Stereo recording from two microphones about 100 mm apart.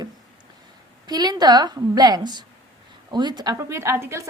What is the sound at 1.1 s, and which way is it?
A woman's voice, 45° right (ahead or behind).